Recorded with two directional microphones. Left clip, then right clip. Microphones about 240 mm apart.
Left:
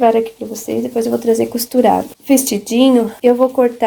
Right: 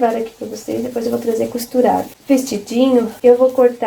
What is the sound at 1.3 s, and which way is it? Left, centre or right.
A woman's voice, left.